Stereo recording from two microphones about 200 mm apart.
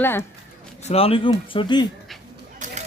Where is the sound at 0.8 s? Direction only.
30° left (ahead or behind).